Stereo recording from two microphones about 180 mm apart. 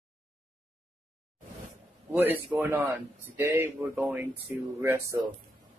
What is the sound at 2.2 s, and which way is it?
Speech, 10° right (ahead or behind).